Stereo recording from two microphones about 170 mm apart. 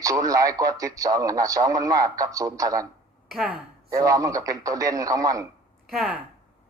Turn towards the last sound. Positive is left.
turn(degrees=-5)  # may be behind; listen again after turning